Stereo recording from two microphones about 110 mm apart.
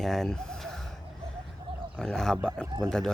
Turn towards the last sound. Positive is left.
turn(degrees=5)  # may be behind; listen again after turning